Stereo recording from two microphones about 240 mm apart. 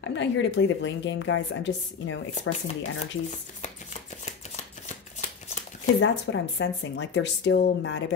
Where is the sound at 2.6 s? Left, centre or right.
Left.